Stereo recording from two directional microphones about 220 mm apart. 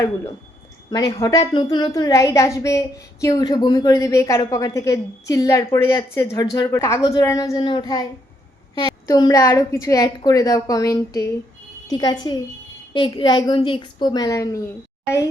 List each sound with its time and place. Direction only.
0.9 s a woman's voice: 20° left (ahead or behind)